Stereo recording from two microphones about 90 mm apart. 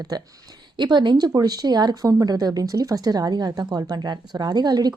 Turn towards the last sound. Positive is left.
turn(degrees=-50)  # may be behind; listen again after turning